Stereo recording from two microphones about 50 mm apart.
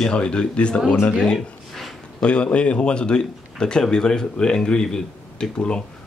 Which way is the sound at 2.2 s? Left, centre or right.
Left.